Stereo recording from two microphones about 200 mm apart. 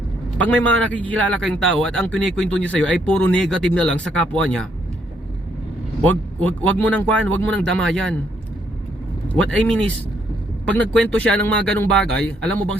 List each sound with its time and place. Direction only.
0.3 s a man's voice: 5° left (ahead or behind)
6.0 s a man's voice: 5° left (ahead or behind)
9.3 s a man's voice: 5° left (ahead or behind)